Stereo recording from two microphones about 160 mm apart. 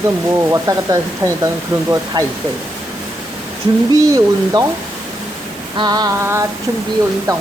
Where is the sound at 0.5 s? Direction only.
20° right (ahead or behind).